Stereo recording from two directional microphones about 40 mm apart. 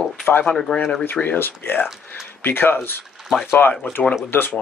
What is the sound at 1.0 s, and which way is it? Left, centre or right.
Speech, left.